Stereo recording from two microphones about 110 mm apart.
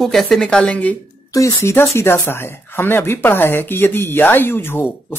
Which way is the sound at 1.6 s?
25° left (ahead or behind).